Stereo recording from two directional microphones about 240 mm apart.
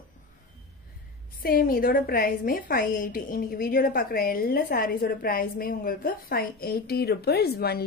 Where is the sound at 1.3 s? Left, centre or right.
Left.